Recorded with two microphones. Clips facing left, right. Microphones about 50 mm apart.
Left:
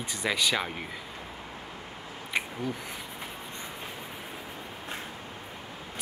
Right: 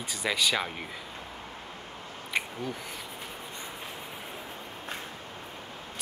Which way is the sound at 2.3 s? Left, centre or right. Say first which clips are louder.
Even; centre.